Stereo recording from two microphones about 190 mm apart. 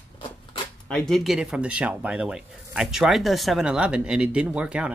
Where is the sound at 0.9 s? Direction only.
Centre (ahead or behind).